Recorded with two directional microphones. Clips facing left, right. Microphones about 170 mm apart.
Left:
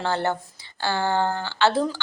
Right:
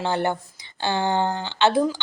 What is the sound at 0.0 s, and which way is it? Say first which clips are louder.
Speech: right 1 dB; 15° right (ahead or behind).